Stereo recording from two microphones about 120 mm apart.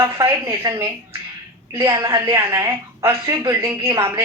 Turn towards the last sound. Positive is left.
turn(degrees=-25)  # may be behind; listen again after turning